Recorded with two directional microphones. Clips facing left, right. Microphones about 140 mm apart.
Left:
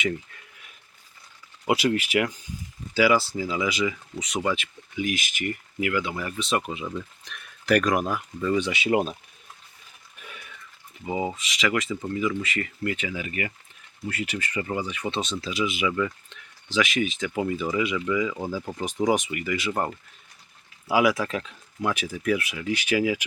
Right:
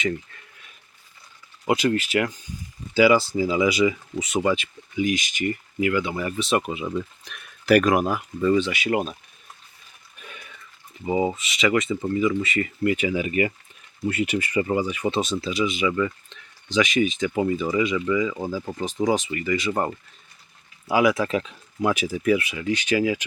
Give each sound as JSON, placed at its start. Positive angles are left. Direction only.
{"t": 1.6, "sound": "speech", "side_deg": 10}
{"t": 2.9, "sound": "speech", "side_deg": 0}
{"t": 3.3, "sound": "speech", "side_deg": -10}
{"t": 8.5, "sound": "speech", "side_deg": 20}
{"t": 11.0, "sound": "speech", "side_deg": -10}
{"t": 18.8, "sound": "speech", "side_deg": 10}
{"t": 20.8, "sound": "speech", "side_deg": 5}